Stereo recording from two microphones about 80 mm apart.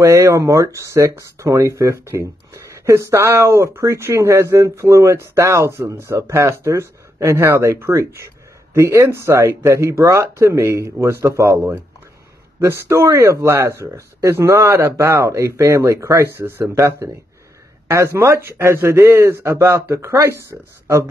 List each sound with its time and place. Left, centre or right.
0.0 s speech: right